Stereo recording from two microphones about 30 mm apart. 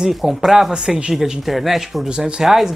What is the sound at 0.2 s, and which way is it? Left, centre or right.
Speech, centre.